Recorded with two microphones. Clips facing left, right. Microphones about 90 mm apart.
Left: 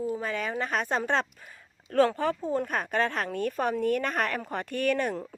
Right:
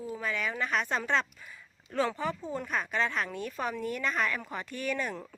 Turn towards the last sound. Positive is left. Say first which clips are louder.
# left 6 dB
turn(degrees=55)  # may be behind; listen again after turning